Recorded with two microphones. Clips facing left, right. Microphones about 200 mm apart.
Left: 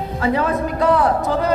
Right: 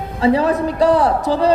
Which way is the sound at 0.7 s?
30° right (ahead or behind).